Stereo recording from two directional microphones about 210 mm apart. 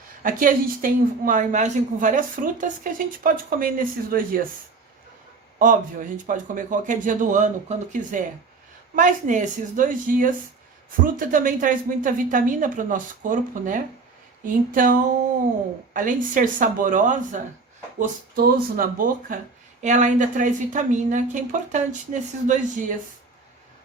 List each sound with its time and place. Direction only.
0.2 s a woman's voice: 40° right (ahead or behind)
5.5 s a woman's voice: 40° right (ahead or behind)